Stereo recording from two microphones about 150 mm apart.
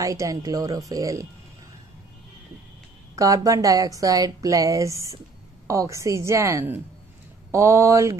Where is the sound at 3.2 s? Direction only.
20° right (ahead or behind).